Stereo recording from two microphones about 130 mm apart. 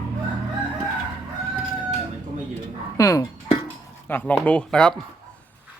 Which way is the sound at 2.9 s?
25° left (ahead or behind).